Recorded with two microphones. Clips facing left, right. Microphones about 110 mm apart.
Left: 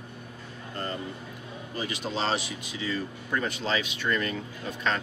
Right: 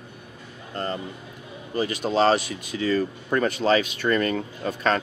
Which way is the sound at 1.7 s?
50° right (ahead or behind).